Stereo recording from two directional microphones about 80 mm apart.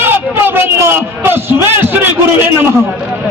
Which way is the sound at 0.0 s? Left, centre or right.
Right.